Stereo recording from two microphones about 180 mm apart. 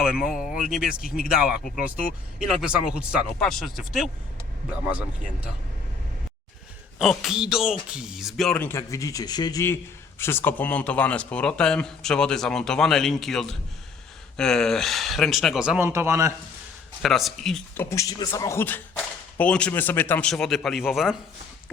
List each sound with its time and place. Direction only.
0.0 s speech: centre (ahead or behind)
7.0 s speech: centre (ahead or behind)
15.9 s speech: 15° right (ahead or behind)
17.0 s speech: centre (ahead or behind)
17.8 s a man's voice: 15° left (ahead or behind); by 21.2 s 5° right (ahead or behind)